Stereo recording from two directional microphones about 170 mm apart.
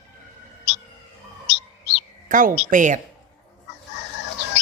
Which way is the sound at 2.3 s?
50° right (ahead or behind).